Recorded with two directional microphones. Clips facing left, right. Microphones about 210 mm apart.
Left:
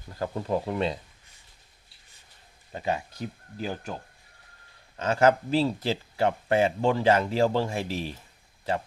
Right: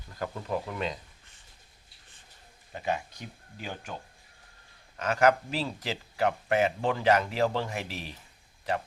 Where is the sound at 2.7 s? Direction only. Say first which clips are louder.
Left 2 dB; 35° left (ahead or behind).